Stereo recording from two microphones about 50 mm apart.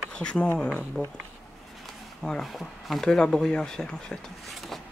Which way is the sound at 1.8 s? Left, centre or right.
Centre.